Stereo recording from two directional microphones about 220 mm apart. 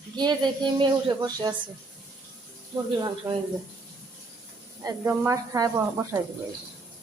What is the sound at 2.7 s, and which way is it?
Speech, 20° right (ahead or behind).